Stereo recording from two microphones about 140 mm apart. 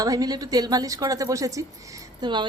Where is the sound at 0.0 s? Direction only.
25° right (ahead or behind).